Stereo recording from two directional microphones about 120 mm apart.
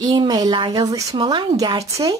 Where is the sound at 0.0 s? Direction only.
35° right (ahead or behind).